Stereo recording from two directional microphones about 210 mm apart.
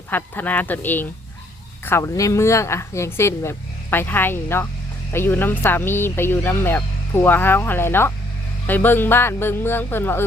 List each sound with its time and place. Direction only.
0.1 s speech: 10° left (ahead or behind)